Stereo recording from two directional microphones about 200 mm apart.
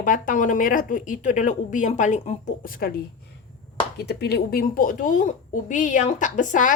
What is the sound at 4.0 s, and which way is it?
A woman's voice, 55° left (ahead or behind).